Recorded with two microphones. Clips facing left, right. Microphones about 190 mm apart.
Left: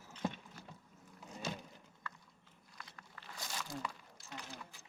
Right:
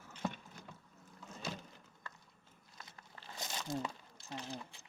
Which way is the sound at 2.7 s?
25° right (ahead or behind).